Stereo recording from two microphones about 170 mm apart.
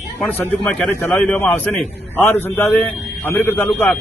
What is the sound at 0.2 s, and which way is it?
A man's voice, 5° left (ahead or behind).